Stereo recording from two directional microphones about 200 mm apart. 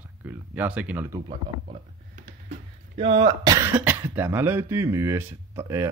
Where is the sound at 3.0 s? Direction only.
30° right (ahead or behind).